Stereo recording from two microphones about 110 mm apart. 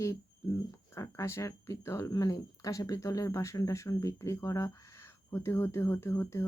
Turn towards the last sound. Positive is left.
turn(degrees=25)  # may be behind; listen again after turning